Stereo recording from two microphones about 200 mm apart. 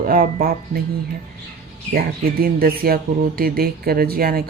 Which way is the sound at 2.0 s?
50° right (ahead or behind).